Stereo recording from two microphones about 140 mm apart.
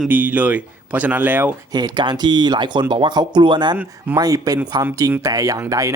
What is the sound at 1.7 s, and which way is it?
Speech, 30° right (ahead or behind).